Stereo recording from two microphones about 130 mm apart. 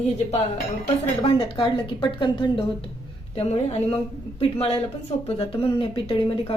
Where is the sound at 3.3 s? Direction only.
55° left (ahead or behind).